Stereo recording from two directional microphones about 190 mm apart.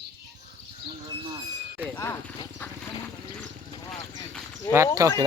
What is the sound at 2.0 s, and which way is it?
Speech, 15° left (ahead or behind).